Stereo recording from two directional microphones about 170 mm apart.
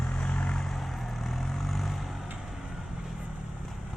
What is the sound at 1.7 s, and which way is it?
Vehicle, centre (ahead or behind).